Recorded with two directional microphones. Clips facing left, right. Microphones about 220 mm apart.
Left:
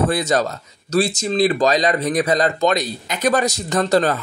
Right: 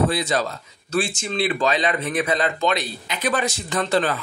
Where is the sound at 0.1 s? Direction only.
45° left (ahead or behind).